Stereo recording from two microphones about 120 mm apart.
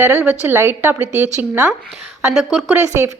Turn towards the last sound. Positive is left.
turn(degrees=-20)  # may be behind; listen again after turning